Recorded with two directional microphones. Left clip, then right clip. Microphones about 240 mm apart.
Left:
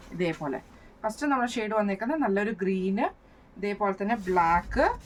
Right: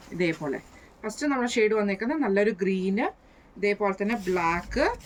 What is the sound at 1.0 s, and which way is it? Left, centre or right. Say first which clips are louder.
A woman's voice: left 1 dB; centre.